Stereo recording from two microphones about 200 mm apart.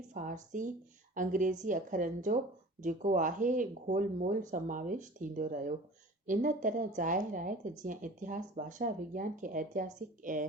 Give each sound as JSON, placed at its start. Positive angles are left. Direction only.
{"t": 0.1, "sound": "a woman's voice", "side_deg": -40}